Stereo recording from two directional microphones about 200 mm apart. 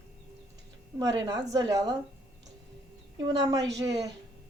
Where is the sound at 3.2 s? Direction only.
20° right (ahead or behind).